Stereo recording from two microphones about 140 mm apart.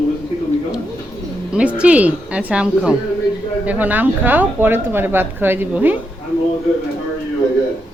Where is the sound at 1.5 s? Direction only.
10° right (ahead or behind).